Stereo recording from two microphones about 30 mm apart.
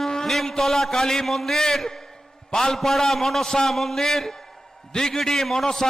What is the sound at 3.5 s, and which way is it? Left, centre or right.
A man's voice, centre.